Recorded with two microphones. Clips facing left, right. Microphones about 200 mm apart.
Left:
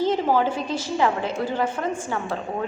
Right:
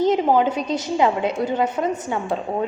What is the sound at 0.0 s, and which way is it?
A woman's voice, 20° right (ahead or behind).